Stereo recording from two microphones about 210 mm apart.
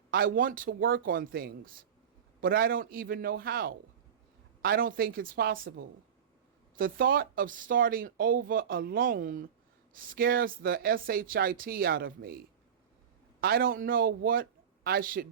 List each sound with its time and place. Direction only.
0.1 s speech: 45° right (ahead or behind)
13.4 s speech: 45° right (ahead or behind)